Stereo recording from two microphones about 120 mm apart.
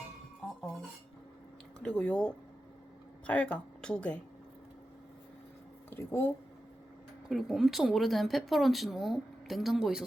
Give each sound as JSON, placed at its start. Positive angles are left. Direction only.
{"t": 1.8, "sound": "speech", "side_deg": 10}
{"t": 5.9, "sound": "speech", "side_deg": 20}
{"t": 7.3, "sound": "speech", "side_deg": -5}